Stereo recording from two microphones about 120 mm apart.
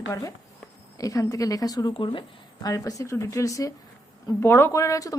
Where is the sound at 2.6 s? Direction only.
30° left (ahead or behind).